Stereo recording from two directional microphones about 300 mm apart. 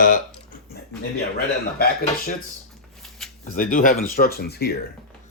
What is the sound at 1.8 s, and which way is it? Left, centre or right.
Speech, left.